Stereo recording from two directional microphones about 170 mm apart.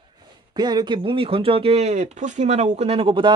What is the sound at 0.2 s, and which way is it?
A man's voice, 25° right (ahead or behind).